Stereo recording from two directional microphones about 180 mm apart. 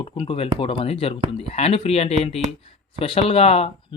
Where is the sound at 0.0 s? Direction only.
30° left (ahead or behind).